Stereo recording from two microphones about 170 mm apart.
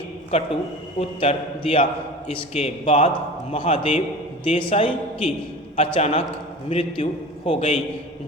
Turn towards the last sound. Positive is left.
turn(degrees=35)  # may be behind; listen again after turning